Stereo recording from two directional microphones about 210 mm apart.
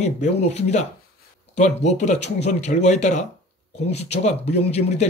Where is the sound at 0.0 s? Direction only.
30° left (ahead or behind).